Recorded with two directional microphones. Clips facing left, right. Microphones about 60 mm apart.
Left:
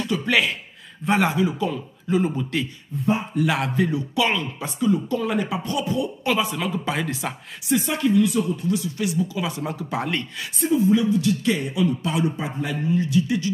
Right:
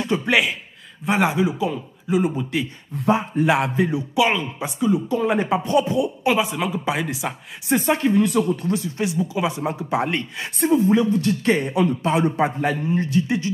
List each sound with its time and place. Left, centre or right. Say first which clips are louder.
0.0 s speech: right 2 dB; right
3.3 s speech: right 3 dB; right
5.9 s speech: right 3 dB; centre
7.6 s speech: right 2 dB; right
10.6 s speech: right 2 dB; right
12.4 s a man's voice: right 7 dB; right
12.8 s speech: even; right